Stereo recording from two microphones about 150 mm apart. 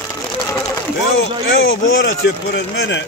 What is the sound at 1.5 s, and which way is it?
Speech, 90° left.